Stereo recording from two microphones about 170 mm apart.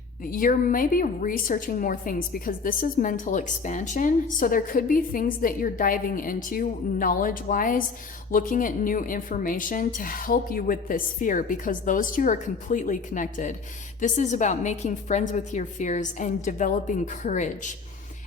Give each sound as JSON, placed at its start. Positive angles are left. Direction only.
{"t": 0.3, "sound": "a woman's voice", "side_deg": 55}